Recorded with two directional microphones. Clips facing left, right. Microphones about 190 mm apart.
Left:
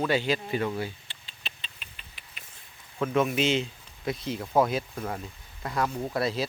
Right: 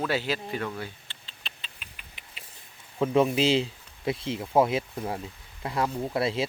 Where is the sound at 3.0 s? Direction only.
30° right (ahead or behind).